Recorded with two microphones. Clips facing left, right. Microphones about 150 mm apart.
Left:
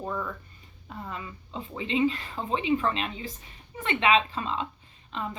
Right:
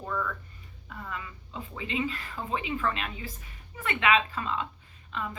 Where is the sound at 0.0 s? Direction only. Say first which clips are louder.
Left 1 dB; 25° left (ahead or behind).